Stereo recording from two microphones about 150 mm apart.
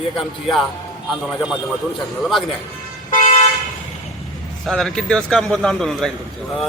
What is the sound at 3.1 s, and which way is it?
Toot, 55° left (ahead or behind).